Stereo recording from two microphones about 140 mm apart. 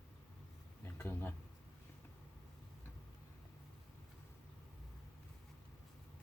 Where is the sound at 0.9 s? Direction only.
15° left (ahead or behind).